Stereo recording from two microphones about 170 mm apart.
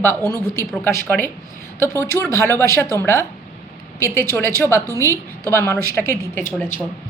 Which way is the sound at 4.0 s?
15° left (ahead or behind).